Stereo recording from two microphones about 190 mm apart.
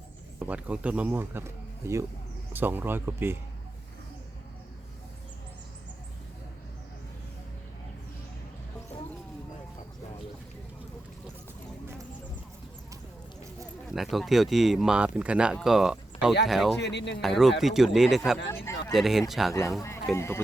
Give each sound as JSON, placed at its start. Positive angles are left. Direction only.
{"t": 0.3, "sound": "speech", "side_deg": -10}
{"t": 13.9, "sound": "speech", "side_deg": 0}
{"t": 16.8, "sound": "speech", "side_deg": 65}
{"t": 17.2, "sound": "speech", "side_deg": 0}
{"t": 18.4, "sound": "speech", "side_deg": 15}
{"t": 18.9, "sound": "speech", "side_deg": 0}
{"t": 20.1, "sound": "speech", "side_deg": 15}